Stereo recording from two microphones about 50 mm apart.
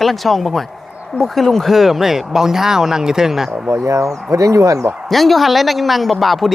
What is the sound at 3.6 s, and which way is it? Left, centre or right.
Speech, right.